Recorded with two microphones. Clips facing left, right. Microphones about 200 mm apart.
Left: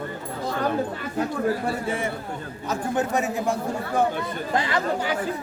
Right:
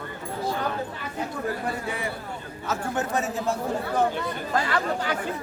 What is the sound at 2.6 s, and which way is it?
Speech, 15° left (ahead or behind).